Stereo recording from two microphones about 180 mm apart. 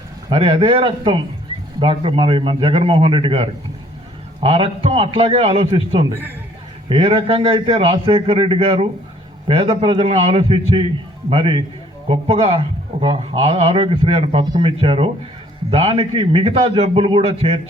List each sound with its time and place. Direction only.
0.3 s a man's voice: 30° right (ahead or behind)